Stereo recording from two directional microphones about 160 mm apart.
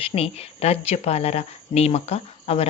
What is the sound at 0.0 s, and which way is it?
Speech, 40° left (ahead or behind).